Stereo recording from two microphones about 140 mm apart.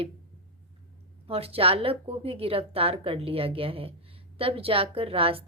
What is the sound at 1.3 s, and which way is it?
Speech, 45° right (ahead or behind).